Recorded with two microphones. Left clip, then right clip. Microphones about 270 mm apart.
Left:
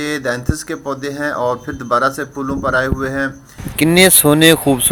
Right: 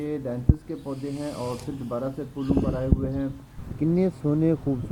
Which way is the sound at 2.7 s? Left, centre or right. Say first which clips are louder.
Left 12 dB; left.